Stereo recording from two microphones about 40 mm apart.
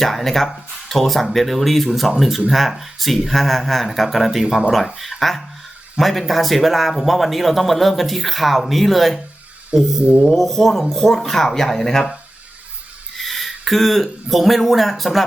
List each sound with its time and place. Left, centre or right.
0.0 s speech: centre
10.0 s a sound: right
10.2 s speech: centre
13.1 s speech: centre